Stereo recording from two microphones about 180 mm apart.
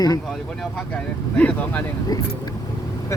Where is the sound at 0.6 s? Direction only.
5° left (ahead or behind).